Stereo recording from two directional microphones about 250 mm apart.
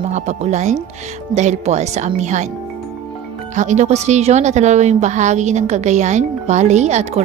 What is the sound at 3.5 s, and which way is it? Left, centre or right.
A woman's voice, right.